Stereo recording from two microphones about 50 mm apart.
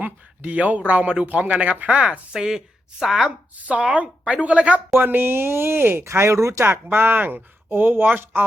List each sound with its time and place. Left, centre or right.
0.0 s speech: right
2.3 s a woman's voice: centre
3.7 s speech: right
4.9 s speech: right
6.8 s speech: right